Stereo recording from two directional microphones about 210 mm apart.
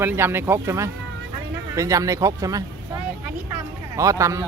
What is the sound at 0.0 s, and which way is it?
Speech, 10° right (ahead or behind).